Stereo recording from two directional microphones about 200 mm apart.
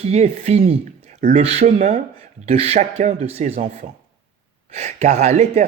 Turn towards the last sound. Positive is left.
turn(degrees=-35)  # may be behind; listen again after turning